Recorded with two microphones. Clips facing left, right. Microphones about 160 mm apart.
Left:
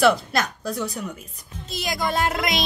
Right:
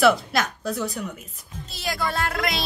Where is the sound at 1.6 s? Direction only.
15° left (ahead or behind).